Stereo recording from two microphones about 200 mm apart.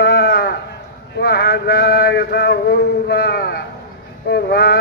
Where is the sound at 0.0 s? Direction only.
50° left (ahead or behind).